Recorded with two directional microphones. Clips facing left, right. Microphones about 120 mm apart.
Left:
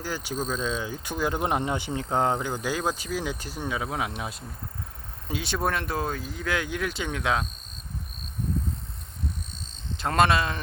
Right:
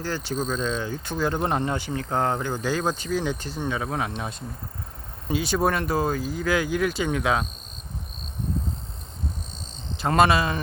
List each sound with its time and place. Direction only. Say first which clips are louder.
0.0 s speech: right 3 dB; 10° left (ahead or behind)
10.0 s speech: right 3 dB; 5° right (ahead or behind)